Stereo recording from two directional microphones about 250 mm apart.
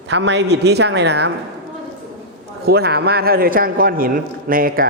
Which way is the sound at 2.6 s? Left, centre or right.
Right.